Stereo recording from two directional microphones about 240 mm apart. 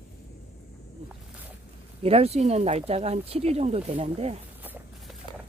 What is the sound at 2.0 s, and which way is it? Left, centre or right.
Speech, right.